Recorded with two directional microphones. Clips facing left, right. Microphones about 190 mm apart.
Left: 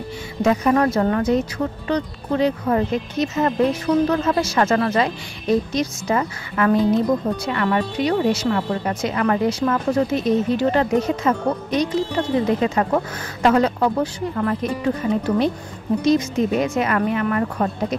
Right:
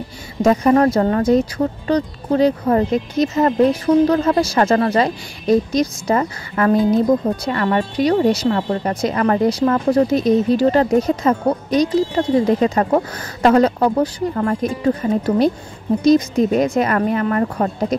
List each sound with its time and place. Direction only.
0.4 s speech: 35° right (ahead or behind)